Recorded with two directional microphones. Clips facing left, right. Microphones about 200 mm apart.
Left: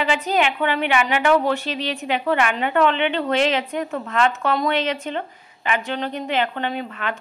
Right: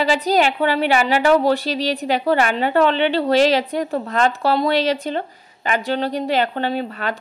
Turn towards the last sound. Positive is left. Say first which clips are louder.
# right 4 dB
turn(degrees=-35)  # may be behind; listen again after turning